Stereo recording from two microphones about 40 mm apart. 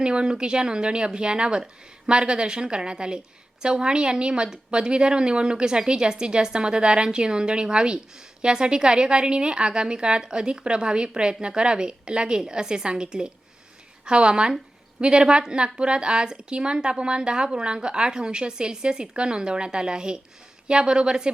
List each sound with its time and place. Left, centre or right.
0.0 s a woman's voice: right